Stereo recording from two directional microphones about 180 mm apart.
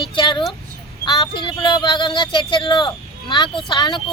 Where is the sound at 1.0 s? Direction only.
25° left (ahead or behind).